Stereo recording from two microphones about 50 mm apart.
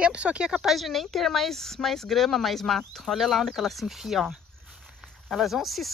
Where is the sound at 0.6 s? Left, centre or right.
Centre.